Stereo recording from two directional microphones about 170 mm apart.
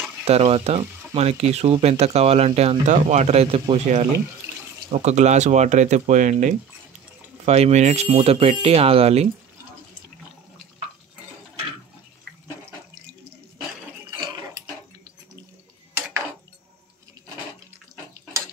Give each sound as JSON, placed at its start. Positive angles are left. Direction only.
{"t": 0.2, "sound": "speech", "side_deg": -35}